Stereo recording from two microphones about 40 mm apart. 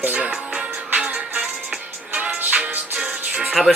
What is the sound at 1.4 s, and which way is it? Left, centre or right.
Music, right.